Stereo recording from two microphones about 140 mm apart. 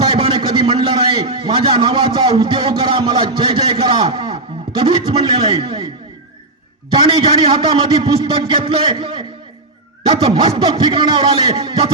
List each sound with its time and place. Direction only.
0.0 s a sound: 35° right (ahead or behind)
6.9 s a man's voice: 35° right (ahead or behind)
10.2 s a man's voice: 30° right (ahead or behind)